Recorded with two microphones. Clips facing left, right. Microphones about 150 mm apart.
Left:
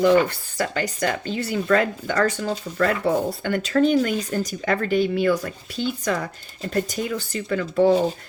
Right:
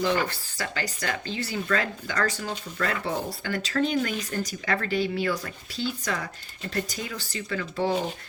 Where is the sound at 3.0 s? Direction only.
50° left (ahead or behind).